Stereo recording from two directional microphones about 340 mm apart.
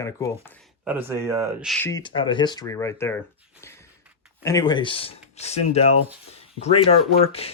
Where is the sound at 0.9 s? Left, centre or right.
Centre.